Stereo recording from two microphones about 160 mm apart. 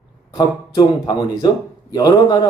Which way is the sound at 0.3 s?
25° left (ahead or behind).